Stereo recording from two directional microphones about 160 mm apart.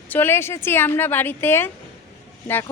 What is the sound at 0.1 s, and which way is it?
Speech, 15° left (ahead or behind).